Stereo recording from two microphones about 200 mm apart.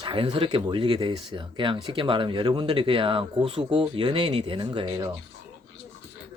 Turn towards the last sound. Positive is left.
turn(degrees=-20)  # may be behind; listen again after turning